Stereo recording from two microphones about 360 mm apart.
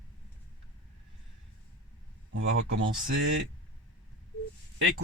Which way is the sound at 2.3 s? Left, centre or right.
Right.